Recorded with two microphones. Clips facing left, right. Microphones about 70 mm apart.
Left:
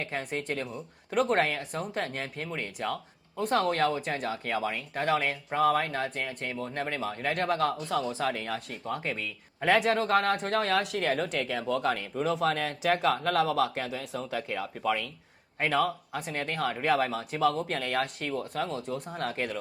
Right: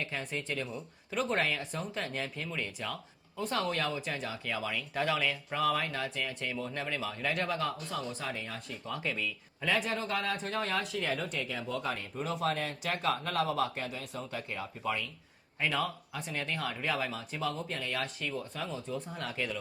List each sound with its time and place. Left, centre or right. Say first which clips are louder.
0.0 s speech: left 4 dB; left
8.8 s a man's voice: right 2 dB; left
15.5 s speech: left 6 dB; left